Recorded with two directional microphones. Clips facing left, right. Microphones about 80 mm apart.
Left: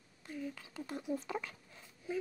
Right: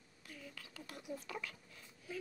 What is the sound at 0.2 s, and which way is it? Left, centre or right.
Speech, left.